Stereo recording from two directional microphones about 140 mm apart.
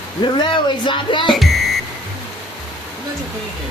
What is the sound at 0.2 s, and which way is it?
Speech, 35° left (ahead or behind).